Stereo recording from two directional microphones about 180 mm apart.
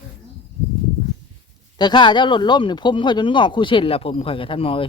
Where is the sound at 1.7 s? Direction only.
25° left (ahead or behind).